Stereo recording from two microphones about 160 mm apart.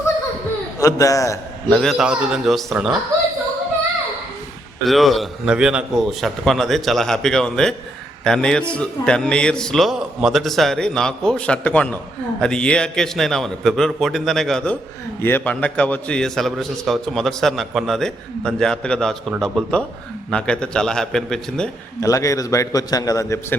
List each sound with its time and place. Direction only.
0.8 s a man's voice: 20° left (ahead or behind)
1.7 s a man's voice: centre (ahead or behind)
4.9 s a man's voice: centre (ahead or behind)
22.0 s a man's voice: 20° left (ahead or behind)